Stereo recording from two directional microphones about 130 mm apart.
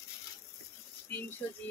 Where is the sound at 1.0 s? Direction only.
15° left (ahead or behind).